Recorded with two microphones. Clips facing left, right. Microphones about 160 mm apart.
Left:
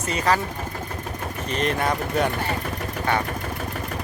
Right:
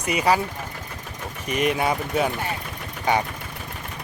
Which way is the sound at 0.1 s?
10° right (ahead or behind).